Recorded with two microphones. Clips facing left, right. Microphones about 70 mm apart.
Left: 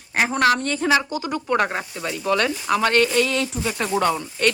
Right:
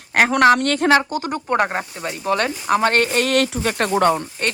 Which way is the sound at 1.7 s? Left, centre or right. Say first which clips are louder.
Right 2 dB; right.